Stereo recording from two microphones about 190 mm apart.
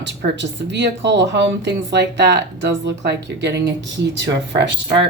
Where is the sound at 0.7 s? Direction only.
65° right (ahead or behind).